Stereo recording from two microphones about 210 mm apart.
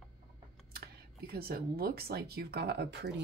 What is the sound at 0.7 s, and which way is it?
Speech, 45° right (ahead or behind).